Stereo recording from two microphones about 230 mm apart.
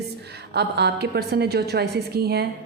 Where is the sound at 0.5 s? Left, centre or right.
Right.